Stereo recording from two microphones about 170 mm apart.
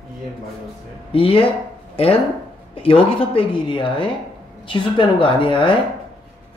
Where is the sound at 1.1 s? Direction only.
30° left (ahead or behind).